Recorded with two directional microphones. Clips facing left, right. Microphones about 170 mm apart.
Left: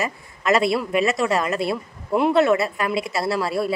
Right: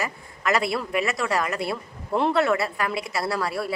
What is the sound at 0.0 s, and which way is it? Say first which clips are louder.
A woman's voice: left 3 dB; 25° left (ahead or behind).